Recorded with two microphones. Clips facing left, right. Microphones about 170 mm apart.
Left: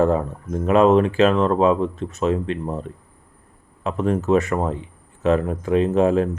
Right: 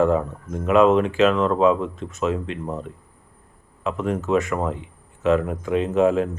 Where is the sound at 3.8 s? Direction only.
35° left (ahead or behind).